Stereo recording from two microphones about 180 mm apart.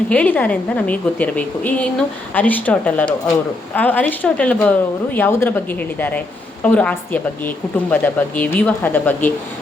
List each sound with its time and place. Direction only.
0.1 s a woman's voice: 10° left (ahead or behind)